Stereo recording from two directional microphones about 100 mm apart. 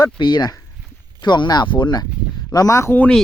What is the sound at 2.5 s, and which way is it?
Speech, 35° left (ahead or behind).